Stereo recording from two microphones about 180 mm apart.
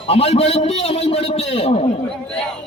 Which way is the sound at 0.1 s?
35° left (ahead or behind).